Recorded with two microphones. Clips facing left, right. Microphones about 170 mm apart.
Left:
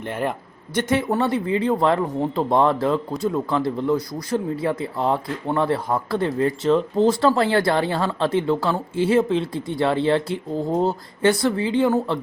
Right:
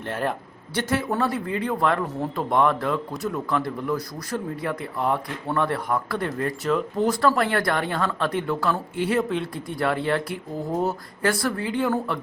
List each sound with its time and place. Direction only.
0.0 s a man's voice: 15° left (ahead or behind)